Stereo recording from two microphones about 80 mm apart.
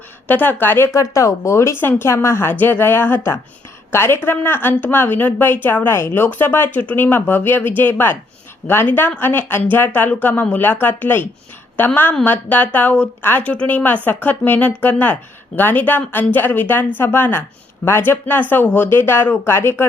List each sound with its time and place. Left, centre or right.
0.3 s a woman's voice: left
0.9 s a woman's voice: left